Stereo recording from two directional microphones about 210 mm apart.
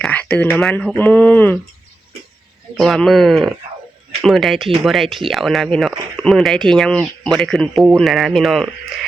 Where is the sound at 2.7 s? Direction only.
Centre (ahead or behind).